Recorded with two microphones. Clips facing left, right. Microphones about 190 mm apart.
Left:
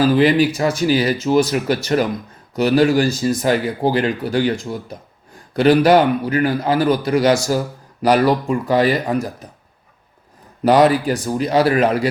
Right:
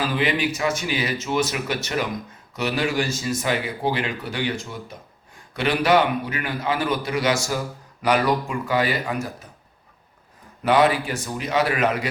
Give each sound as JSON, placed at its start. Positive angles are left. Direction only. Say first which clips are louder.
{"t": 0.0, "sound": "speech", "louder": "left 10 dB", "side_deg": 35}
{"t": 10.6, "sound": "speech", "louder": "left 6 dB", "side_deg": 40}